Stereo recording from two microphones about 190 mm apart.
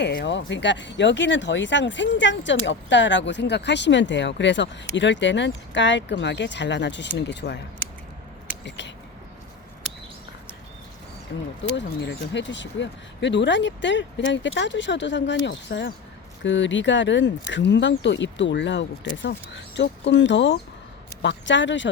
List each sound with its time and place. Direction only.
0.0 s speech: 65° left (ahead or behind)
8.6 s speech: 65° left (ahead or behind)
12.0 s speech: 70° left (ahead or behind)